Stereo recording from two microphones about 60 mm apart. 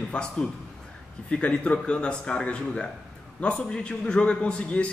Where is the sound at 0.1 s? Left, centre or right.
Centre.